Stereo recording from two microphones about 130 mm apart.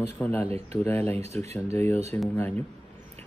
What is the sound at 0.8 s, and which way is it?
Speech, 15° left (ahead or behind).